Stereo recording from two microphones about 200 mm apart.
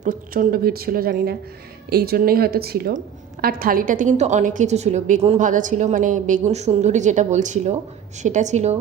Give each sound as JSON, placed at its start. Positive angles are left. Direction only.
{"t": 0.0, "sound": "a woman's voice", "side_deg": -40}